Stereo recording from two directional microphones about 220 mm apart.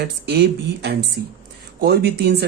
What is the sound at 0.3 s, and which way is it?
Speech, 50° right (ahead or behind).